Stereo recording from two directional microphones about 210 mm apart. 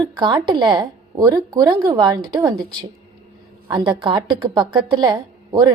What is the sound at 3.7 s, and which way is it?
A woman's voice, 20° right (ahead or behind).